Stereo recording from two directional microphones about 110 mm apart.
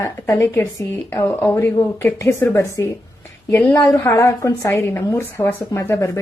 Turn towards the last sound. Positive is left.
turn(degrees=25)  # may be behind; listen again after turning